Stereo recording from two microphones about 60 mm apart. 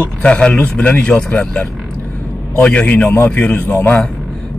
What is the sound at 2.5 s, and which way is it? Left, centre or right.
Speech, left.